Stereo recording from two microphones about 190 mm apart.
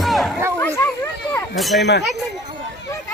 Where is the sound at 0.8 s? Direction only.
15° left (ahead or behind).